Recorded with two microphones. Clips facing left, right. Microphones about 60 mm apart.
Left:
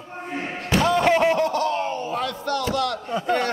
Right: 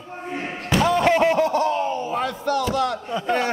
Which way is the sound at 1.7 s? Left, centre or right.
Left.